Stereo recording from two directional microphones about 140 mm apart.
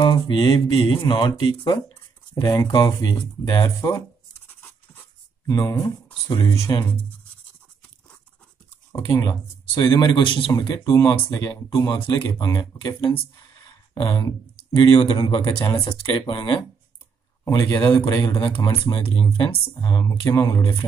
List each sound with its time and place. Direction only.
0.0 s speech: 35° left (ahead or behind)
5.5 s speech: 25° left (ahead or behind)
8.9 s speech: 20° left (ahead or behind)
17.5 s speech: 25° left (ahead or behind)